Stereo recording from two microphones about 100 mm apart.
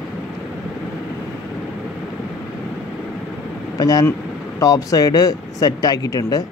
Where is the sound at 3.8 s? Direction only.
40° left (ahead or behind).